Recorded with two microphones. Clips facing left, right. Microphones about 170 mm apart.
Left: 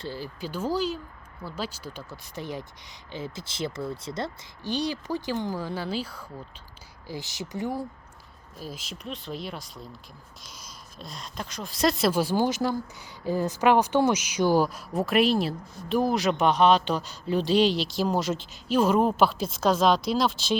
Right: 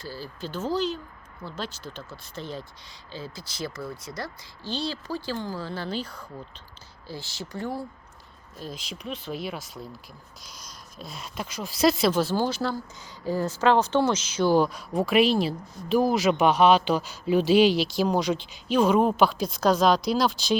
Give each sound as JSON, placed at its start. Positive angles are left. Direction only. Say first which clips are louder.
{"t": 0.0, "sound": "speech", "louder": "left 2 dB", "side_deg": 20}
{"t": 7.1, "sound": "speech", "louder": "left 2 dB", "side_deg": 20}
{"t": 8.5, "sound": "speech", "louder": "right 1 dB", "side_deg": 5}
{"t": 11.0, "sound": "speech", "louder": "right 2 dB", "side_deg": -5}
{"t": 12.2, "sound": "speech", "louder": "left 1 dB", "side_deg": 15}